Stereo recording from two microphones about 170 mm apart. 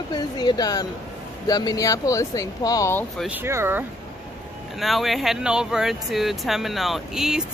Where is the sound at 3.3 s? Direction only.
15° right (ahead or behind).